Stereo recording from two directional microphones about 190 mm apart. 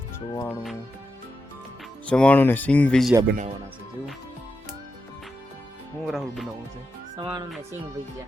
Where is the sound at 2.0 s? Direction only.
5° left (ahead or behind).